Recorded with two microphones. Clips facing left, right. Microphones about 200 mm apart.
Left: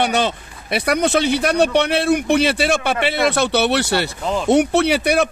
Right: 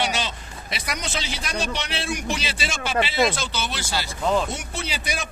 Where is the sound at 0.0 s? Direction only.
55° left (ahead or behind).